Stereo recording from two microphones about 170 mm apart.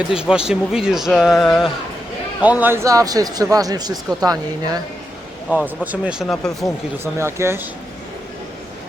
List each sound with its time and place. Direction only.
0.1 s speech: 5° right (ahead or behind)
2.4 s speech: 10° right (ahead or behind)
5.6 s speech: 10° right (ahead or behind)
6.2 s speech: 5° left (ahead or behind)
7.0 s speech: 15° right (ahead or behind)